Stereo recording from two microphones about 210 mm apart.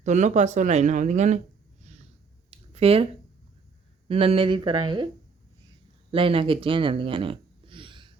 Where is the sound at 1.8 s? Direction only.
30° right (ahead or behind).